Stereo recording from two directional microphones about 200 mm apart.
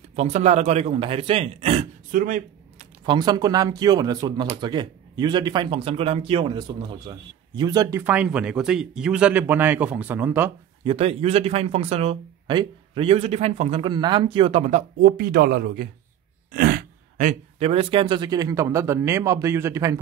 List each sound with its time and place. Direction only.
0.1 s speech: 35° right (ahead or behind)
3.0 s speech: 20° right (ahead or behind)
10.8 s speech: 30° right (ahead or behind)